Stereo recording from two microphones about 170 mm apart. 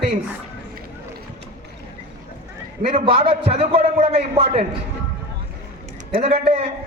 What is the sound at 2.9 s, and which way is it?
A man's voice, 35° right (ahead or behind).